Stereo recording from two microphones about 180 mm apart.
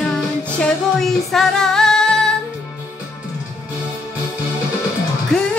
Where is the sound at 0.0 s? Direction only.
5° left (ahead or behind).